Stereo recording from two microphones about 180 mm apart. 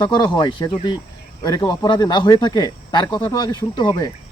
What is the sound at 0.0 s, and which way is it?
Speech, 25° left (ahead or behind).